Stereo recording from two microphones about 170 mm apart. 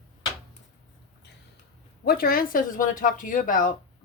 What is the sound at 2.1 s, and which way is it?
Speech, 60° left (ahead or behind).